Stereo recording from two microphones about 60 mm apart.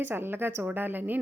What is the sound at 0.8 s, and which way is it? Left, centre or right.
Speech, right.